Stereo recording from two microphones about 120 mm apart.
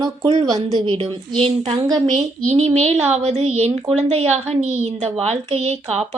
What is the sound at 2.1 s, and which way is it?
Speech, 60° right (ahead or behind).